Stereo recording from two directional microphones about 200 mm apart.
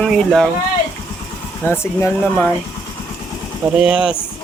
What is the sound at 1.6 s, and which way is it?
Speech, 10° left (ahead or behind).